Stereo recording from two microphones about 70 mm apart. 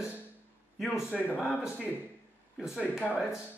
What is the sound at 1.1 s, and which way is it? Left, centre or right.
Speech, left.